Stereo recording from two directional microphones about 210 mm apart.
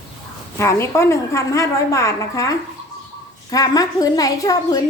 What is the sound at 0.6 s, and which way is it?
A woman's voice, 15° left (ahead or behind).